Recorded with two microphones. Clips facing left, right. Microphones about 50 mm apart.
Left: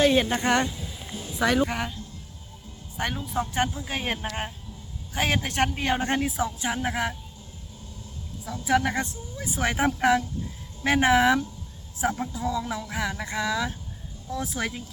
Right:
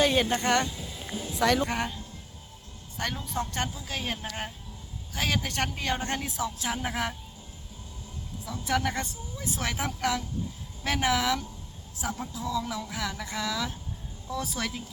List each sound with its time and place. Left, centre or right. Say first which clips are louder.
0.0 s speech: left 3 dB; centre
0.3 s speech: left 2 dB; centre
0.8 s a sound: right 1 dB; centre
1.3 s speech: left 2 dB; centre
3.2 s speech: left 8 dB; centre
3.8 s speech: left 4 dB; left
4.3 s speech: left 3 dB; centre
6.7 s speech: left 3 dB; centre
8.6 s speech: left 5 dB; centre; by 12.2 s left
12.4 s speech: right 1 dB; centre